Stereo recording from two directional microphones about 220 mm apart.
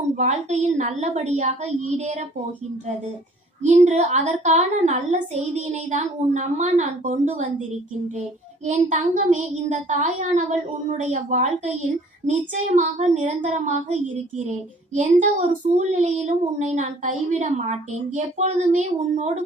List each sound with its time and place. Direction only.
0.2 s speech: 30° right (ahead or behind)
3.6 s speech: 35° right (ahead or behind)
8.6 s speech: 35° right (ahead or behind)